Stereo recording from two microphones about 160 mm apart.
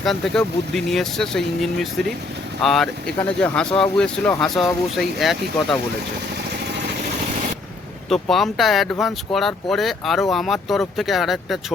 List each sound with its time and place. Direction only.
0.0 s speech: 5° left (ahead or behind)
8.1 s speech: centre (ahead or behind)